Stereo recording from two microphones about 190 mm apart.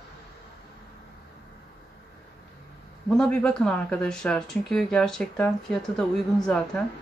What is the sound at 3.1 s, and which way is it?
Speech, 5° left (ahead or behind).